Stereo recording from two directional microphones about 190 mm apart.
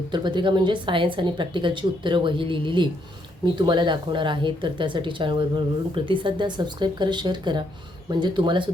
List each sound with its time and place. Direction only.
0.1 s speech: 25° right (ahead or behind)